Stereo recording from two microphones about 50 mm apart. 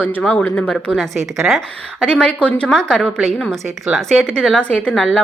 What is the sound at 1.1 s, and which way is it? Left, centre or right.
Speech, centre.